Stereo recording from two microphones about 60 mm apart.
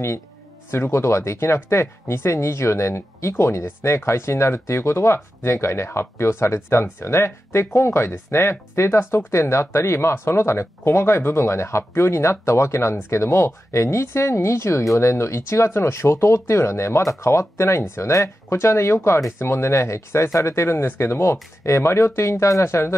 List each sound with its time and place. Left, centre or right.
0.7 s speech: left